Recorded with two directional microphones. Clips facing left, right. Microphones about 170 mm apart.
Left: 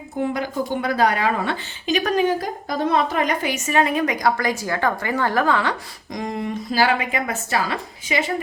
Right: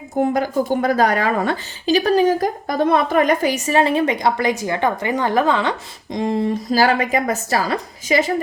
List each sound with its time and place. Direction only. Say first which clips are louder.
0.2 s a woman's voice: right 5 dB; 45° right (ahead or behind)
3.5 s a woman's voice: right 3 dB; 30° right (ahead or behind)